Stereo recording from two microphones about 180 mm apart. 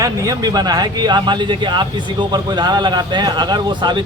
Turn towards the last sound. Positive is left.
turn(degrees=-25)  # may be behind; listen again after turning